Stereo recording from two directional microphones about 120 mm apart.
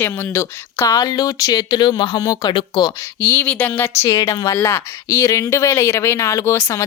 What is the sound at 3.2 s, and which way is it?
Speech, 15° left (ahead or behind).